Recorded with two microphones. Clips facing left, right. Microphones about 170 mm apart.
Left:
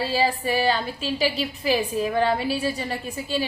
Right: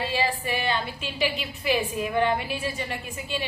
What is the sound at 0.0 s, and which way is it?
A woman's voice, 40° left (ahead or behind).